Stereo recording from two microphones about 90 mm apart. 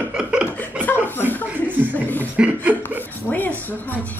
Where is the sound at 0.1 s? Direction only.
10° right (ahead or behind).